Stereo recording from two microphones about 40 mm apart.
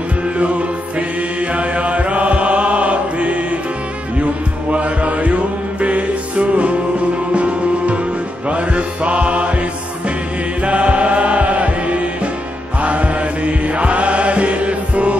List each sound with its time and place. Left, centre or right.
0.9 s chant: right
4.2 s music: right
12.8 s mantra: right